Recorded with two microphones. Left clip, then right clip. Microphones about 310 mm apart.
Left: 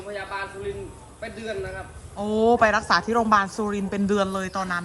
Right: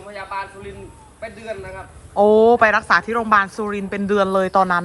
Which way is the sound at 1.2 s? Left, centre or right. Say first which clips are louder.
Right 3 dB; centre.